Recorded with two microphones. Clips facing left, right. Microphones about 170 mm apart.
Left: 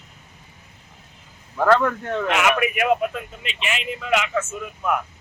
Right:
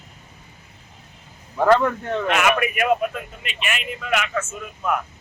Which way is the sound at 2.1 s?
15° left (ahead or behind).